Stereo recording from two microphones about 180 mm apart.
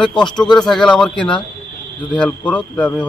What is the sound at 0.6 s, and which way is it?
Speech, 5° left (ahead or behind).